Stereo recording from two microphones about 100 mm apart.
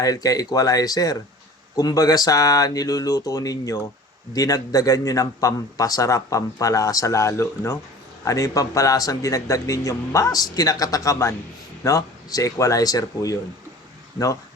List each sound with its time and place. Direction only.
0.0 s a man's voice: 35° left (ahead or behind)